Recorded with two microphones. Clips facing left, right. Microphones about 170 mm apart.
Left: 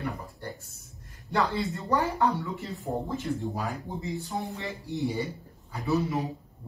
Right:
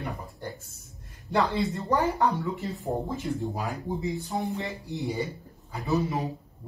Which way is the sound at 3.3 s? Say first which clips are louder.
Right 1 dB; 15° right (ahead or behind).